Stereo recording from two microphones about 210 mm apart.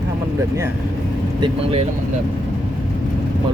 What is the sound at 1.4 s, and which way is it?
Speech, 25° right (ahead or behind).